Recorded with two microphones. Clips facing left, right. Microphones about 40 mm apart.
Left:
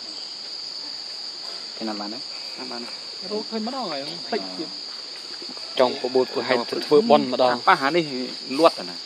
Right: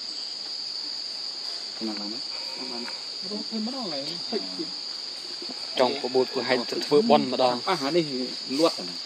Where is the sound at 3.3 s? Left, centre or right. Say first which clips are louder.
Left 5 dB; left.